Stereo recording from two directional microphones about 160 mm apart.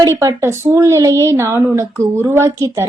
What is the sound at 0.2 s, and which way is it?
A woman's voice, 20° right (ahead or behind).